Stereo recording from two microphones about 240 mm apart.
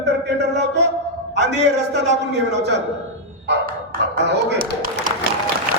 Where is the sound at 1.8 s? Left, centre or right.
Right.